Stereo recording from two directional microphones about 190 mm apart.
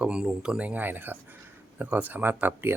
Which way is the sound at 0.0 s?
5° right (ahead or behind).